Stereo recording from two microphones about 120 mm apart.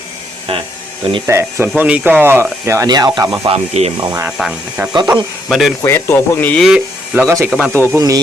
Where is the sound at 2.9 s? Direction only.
35° right (ahead or behind).